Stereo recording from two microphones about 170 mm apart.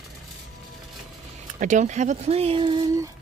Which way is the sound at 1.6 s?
45° right (ahead or behind).